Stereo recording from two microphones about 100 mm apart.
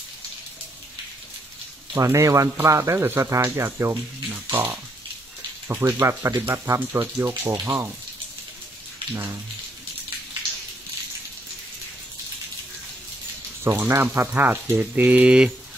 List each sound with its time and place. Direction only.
2.0 s speech: 30° right (ahead or behind)
9.1 s speech: 30° right (ahead or behind)
13.7 s speech: 25° right (ahead or behind); by 15.5 s 10° right (ahead or behind)